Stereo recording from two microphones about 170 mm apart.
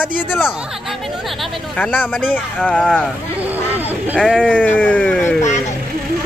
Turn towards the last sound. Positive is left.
turn(degrees=5)  # may be behind; listen again after turning